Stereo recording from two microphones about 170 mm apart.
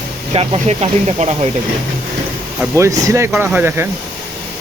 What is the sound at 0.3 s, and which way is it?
Speech, 35° right (ahead or behind).